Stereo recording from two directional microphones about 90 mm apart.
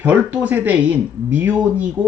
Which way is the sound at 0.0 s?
15° right (ahead or behind).